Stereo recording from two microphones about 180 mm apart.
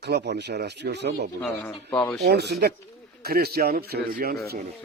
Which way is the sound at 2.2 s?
65° right (ahead or behind).